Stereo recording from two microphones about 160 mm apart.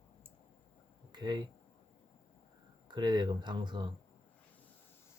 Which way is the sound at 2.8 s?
25° right (ahead or behind).